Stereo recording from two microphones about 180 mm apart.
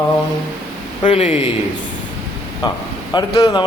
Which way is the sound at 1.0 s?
35° left (ahead or behind).